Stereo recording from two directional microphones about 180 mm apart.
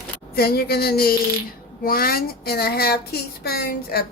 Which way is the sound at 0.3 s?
60° left (ahead or behind).